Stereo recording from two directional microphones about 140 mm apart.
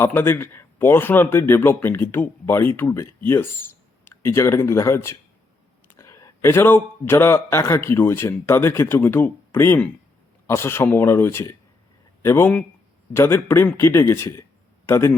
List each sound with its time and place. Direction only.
0.0 s a man's voice: 15° left (ahead or behind)